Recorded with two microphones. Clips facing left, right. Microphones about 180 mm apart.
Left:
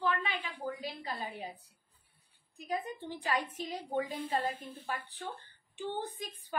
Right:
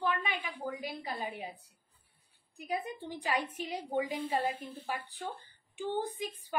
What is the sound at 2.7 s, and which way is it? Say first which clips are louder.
A woman's voice: even; 15° right (ahead or behind).